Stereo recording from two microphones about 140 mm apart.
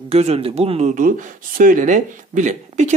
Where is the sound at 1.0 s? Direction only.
75° right (ahead or behind).